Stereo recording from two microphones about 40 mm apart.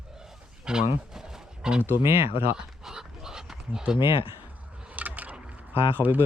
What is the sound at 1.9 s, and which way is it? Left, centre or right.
Speech, right.